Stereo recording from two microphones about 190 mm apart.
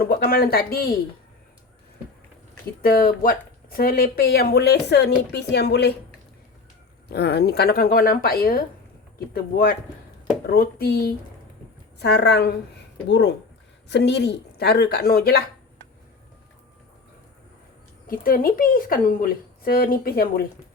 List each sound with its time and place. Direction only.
0.0 s speech: 55° left (ahead or behind)
2.8 s speech: 50° left (ahead or behind)
7.1 s speech: 60° left (ahead or behind)
18.1 s speech: 50° left (ahead or behind)